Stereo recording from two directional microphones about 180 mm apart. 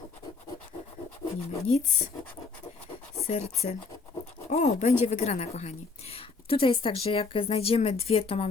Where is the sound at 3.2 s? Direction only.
35° left (ahead or behind).